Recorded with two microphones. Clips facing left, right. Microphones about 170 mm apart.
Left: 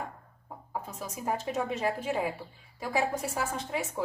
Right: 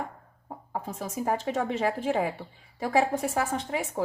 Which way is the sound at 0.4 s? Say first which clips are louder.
Right 4 dB; 50° right (ahead or behind).